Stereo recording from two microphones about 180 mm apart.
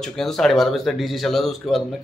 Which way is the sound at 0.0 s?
Centre (ahead or behind).